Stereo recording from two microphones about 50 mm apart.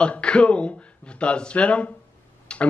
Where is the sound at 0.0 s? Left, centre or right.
Left.